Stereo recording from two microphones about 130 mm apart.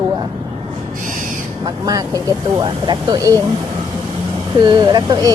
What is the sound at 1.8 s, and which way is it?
A woman's voice, 30° right (ahead or behind).